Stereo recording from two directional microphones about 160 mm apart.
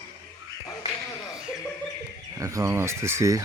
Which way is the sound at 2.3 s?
20° right (ahead or behind).